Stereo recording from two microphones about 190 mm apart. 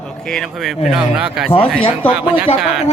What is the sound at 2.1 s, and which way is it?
Speech, 10° right (ahead or behind).